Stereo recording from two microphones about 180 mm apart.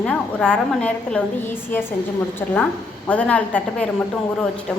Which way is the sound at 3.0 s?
5° left (ahead or behind).